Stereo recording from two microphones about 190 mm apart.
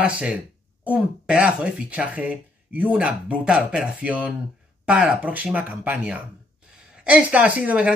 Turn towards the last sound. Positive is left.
turn(degrees=-5)  # may be behind; listen again after turning